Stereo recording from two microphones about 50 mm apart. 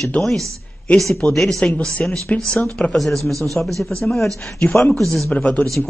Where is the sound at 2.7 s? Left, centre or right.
Left.